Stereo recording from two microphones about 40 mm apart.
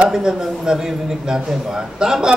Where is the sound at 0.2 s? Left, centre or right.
Centre.